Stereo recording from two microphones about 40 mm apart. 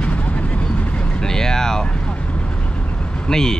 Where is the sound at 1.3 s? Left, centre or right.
Centre.